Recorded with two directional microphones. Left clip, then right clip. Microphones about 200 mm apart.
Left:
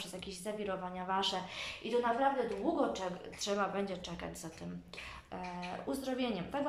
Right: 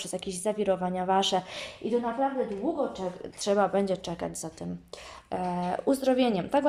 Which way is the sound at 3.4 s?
40° right (ahead or behind).